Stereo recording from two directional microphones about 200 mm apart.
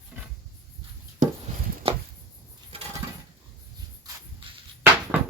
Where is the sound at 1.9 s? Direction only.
25° right (ahead or behind).